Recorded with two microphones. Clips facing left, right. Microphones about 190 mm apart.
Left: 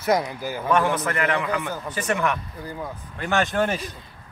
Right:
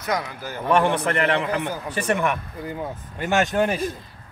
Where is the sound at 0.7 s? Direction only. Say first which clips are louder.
Right 2 dB; 25° right (ahead or behind).